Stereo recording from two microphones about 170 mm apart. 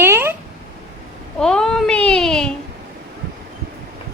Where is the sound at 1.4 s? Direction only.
5° left (ahead or behind).